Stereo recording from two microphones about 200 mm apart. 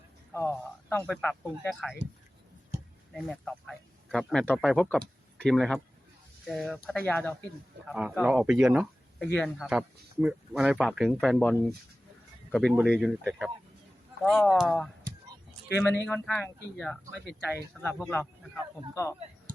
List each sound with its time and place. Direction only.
0.3 s speech: 10° left (ahead or behind)
3.1 s speech: centre (ahead or behind)
7.9 s speech: 5° right (ahead or behind)